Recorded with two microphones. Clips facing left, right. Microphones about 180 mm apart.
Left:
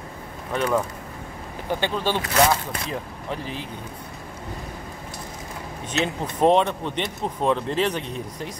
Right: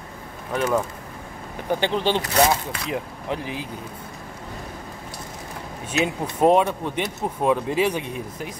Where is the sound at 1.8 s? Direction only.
20° right (ahead or behind).